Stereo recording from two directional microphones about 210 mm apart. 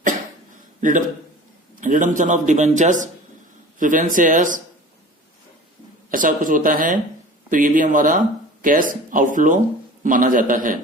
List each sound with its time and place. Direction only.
0.8 s a man's voice: 40° right (ahead or behind)
6.1 s a man's voice: 40° right (ahead or behind)